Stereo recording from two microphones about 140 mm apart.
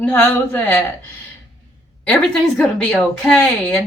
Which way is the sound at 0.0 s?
15° left (ahead or behind).